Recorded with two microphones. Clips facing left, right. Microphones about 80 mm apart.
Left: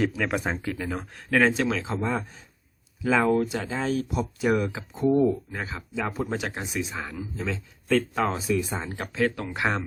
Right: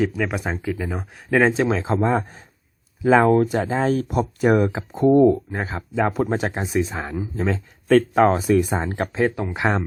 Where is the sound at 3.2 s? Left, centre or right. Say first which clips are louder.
Right 6 dB; right.